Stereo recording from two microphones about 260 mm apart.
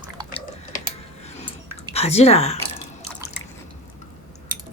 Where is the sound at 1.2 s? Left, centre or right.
Left.